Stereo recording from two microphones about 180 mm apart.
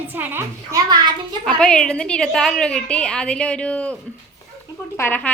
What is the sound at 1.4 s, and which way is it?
A woman's voice, 5° left (ahead or behind).